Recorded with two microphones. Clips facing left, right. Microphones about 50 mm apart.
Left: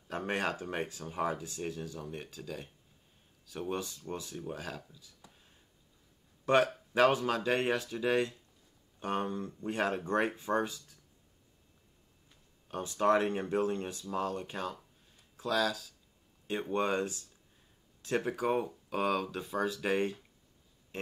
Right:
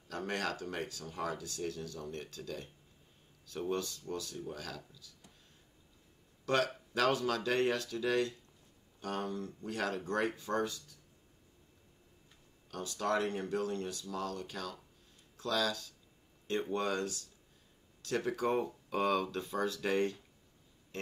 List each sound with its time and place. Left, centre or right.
0.1 s speech: left
6.4 s speech: left
12.6 s speech: left
15.3 s speech: centre
16.7 s speech: left
18.2 s speech: centre
20.9 s a sound: centre